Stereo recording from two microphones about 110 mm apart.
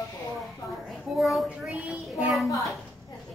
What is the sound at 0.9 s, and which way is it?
Speech, centre (ahead or behind).